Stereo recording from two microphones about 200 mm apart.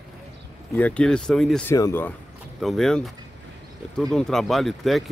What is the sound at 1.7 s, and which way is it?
Speech, 15° left (ahead or behind).